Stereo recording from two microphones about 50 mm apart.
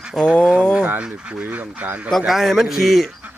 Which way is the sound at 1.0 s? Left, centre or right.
Right.